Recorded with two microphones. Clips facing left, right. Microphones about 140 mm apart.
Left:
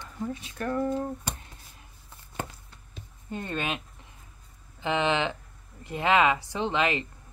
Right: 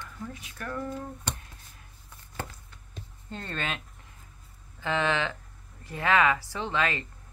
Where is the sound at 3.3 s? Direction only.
15° left (ahead or behind).